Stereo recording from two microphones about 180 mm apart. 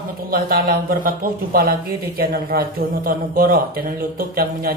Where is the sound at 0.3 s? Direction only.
55° right (ahead or behind).